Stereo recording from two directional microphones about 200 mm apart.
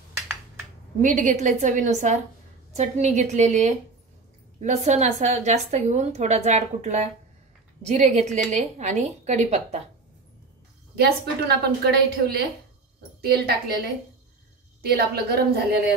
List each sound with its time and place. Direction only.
1.0 s a woman's voice: 40° right (ahead or behind)
11.0 s a woman's voice: 55° right (ahead or behind)
14.8 s a woman's voice: 50° right (ahead or behind)